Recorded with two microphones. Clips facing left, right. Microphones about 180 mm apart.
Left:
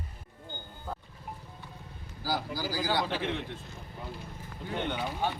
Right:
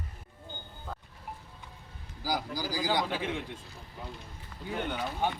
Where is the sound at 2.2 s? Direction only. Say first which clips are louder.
Even; 15° right (ahead or behind).